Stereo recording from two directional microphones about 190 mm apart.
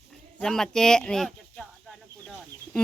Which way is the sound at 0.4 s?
5° left (ahead or behind).